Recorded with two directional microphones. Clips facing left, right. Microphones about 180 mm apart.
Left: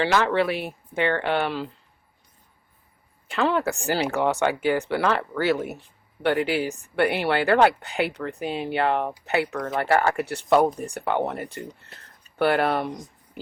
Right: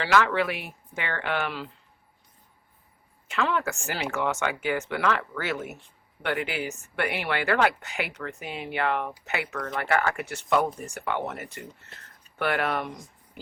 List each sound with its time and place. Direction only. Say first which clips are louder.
0.0 s speech: left 2 dB; 30° left (ahead or behind)
3.2 s speech: left 4 dB; 35° left (ahead or behind)